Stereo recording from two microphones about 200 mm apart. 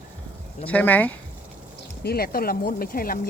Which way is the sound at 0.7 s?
10° left (ahead or behind).